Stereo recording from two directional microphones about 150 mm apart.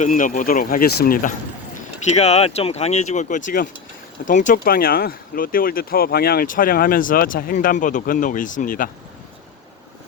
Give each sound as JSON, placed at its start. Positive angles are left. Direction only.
{"t": 0.0, "sound": "speech", "side_deg": 60}
{"t": 2.1, "sound": "speech", "side_deg": 45}